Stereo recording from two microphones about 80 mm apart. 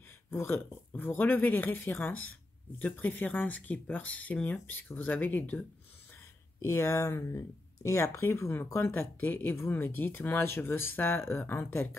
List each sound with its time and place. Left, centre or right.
0.3 s speech: left
6.6 s speech: left